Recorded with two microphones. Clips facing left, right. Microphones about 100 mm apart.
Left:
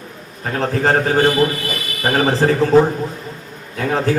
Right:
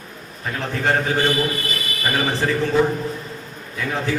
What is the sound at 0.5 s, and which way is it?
A man's voice, 40° left (ahead or behind).